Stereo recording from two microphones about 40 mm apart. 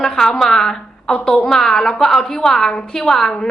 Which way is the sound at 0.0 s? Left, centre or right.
Centre.